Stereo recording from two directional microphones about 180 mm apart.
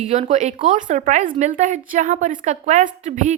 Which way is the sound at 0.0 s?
40° right (ahead or behind).